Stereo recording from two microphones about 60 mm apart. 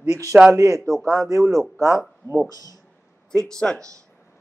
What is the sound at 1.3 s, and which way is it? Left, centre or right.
A man's voice, right.